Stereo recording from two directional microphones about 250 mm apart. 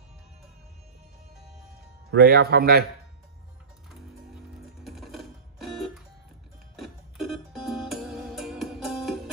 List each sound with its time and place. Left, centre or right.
2.1 s a man's voice: right
4.8 s music: centre